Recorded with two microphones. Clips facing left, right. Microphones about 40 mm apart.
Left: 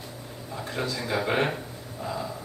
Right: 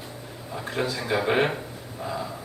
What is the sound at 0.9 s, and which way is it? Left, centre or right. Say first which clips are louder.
Speech: right 3 dB; centre.